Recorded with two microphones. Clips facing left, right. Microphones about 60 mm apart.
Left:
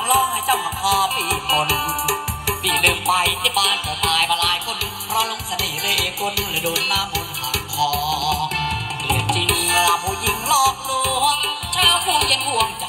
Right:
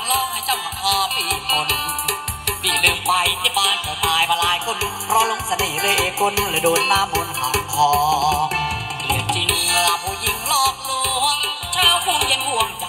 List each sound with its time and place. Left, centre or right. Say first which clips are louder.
0.1 s music: left 4 dB; centre
5.1 s music: right 5 dB; right
9.0 s music: left 1 dB; centre